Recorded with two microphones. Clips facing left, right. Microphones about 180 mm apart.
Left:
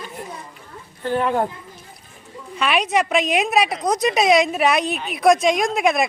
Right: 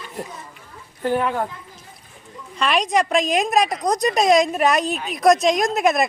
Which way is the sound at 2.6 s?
5° left (ahead or behind).